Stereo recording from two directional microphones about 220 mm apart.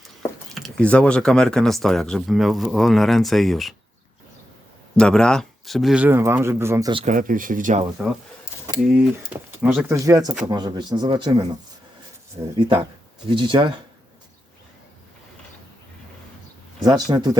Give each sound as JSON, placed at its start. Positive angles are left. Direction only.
{"t": 0.0, "sound": "speech", "side_deg": 0}
{"t": 4.9, "sound": "speech", "side_deg": 5}
{"t": 7.0, "sound": "speech", "side_deg": -35}
{"t": 9.6, "sound": "speech", "side_deg": -5}
{"t": 10.0, "sound": "speech", "side_deg": -15}
{"t": 16.8, "sound": "speech", "side_deg": -20}